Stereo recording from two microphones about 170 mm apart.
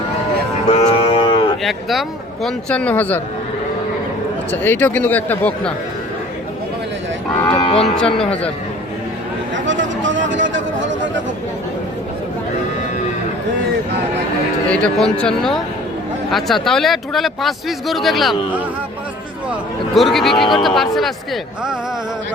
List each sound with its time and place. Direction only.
0.7 s a sound: 40° left (ahead or behind)
1.6 s speech: centre (ahead or behind)
4.5 s speech: 10° left (ahead or behind)
7.5 s cattle: 30° left (ahead or behind)
7.8 s speech: 5° left (ahead or behind)
10.0 s speech: 90° right
14.7 s speech: 5° left (ahead or behind)
20.0 s speech: centre (ahead or behind)